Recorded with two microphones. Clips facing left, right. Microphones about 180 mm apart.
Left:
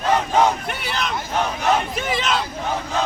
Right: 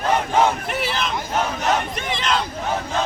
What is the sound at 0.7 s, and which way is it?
Speech, centre (ahead or behind).